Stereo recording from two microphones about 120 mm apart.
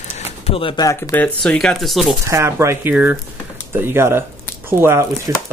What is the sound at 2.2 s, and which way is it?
Speech, 25° right (ahead or behind).